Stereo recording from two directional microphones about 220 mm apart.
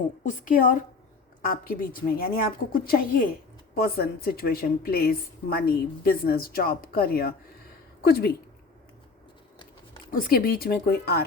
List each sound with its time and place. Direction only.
0.2 s a woman's voice: 35° left (ahead or behind)
10.1 s a woman's voice: 40° left (ahead or behind)